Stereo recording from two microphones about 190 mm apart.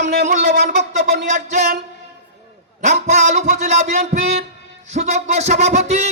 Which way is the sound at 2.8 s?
40° right (ahead or behind).